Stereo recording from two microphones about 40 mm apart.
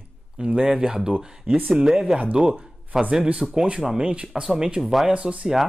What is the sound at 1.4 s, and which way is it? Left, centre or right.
Speech, right.